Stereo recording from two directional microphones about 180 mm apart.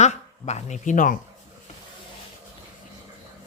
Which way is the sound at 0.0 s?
40° left (ahead or behind).